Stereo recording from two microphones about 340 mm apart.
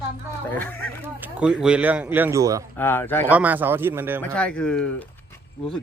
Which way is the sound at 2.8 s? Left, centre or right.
Centre.